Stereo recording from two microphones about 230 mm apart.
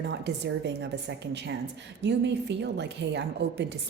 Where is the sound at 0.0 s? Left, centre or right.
Right.